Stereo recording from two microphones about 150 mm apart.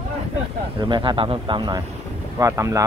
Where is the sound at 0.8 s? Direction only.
30° right (ahead or behind).